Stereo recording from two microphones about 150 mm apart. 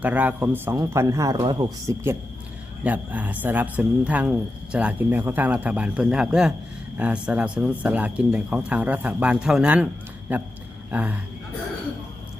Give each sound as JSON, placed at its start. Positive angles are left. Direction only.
{"t": 0.0, "sound": "speech", "side_deg": -10}
{"t": 2.8, "sound": "speech", "side_deg": -10}